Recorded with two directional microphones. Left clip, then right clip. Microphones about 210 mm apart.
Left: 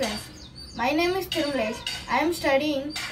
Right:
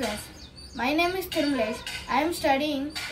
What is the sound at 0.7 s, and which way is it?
Speech, centre (ahead or behind).